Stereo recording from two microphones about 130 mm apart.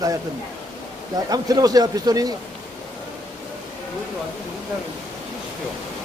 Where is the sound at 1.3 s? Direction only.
30° right (ahead or behind).